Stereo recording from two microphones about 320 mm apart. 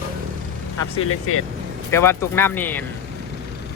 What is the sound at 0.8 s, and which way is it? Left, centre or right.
Speech, left.